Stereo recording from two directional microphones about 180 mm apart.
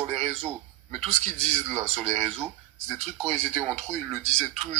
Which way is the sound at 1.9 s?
40° right (ahead or behind).